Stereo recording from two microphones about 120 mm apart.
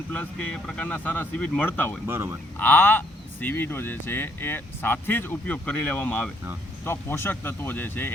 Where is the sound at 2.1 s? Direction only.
20° right (ahead or behind).